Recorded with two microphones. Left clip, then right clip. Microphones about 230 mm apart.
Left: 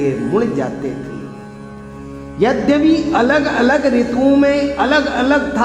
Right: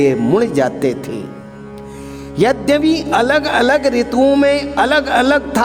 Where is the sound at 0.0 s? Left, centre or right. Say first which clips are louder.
Right 4 dB; right.